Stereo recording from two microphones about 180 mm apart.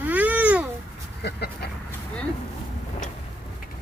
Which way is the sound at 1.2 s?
65° left (ahead or behind).